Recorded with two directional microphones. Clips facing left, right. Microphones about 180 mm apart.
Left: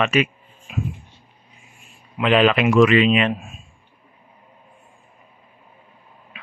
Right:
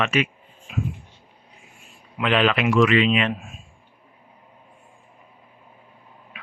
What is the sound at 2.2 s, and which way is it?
Speech, 10° left (ahead or behind).